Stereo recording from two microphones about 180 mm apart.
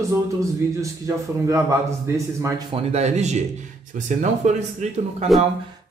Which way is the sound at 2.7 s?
35° right (ahead or behind).